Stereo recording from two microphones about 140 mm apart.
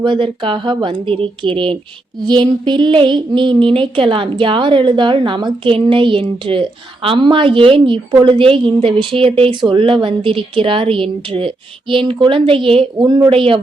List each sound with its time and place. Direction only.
0.0 s speech: 35° right (ahead or behind)